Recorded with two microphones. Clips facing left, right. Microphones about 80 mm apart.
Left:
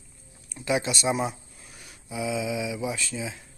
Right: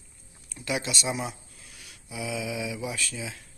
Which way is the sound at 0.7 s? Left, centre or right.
Left.